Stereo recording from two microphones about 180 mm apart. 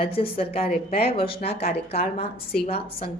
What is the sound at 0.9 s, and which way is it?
Speech, 60° left (ahead or behind).